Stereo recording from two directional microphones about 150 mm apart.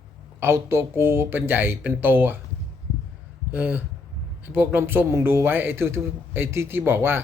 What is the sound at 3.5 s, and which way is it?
Speech, 10° right (ahead or behind).